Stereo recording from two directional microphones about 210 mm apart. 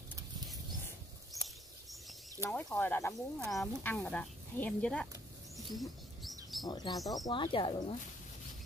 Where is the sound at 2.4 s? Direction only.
10° left (ahead or behind).